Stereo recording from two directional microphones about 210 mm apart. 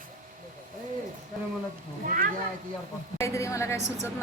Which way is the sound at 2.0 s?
40° right (ahead or behind).